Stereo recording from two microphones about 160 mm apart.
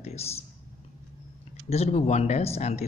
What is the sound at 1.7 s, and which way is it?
Speech, 40° left (ahead or behind).